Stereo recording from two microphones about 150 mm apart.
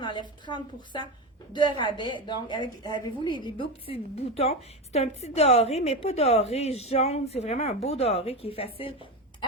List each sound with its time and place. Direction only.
0.0 s a woman's voice: 30° left (ahead or behind)